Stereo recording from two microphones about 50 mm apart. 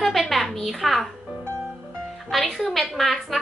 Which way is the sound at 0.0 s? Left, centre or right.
Centre.